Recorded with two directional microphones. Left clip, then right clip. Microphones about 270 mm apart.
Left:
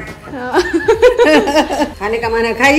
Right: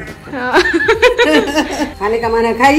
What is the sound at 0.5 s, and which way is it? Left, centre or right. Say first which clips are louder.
A woman's voice: right 1 dB; centre.